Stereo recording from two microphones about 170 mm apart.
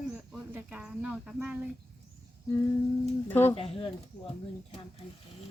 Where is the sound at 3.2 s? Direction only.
10° left (ahead or behind).